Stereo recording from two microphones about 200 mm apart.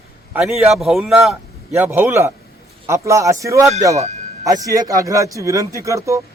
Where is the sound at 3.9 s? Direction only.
35° right (ahead or behind).